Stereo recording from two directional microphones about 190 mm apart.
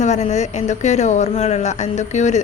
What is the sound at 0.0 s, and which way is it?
Speech, 35° left (ahead or behind).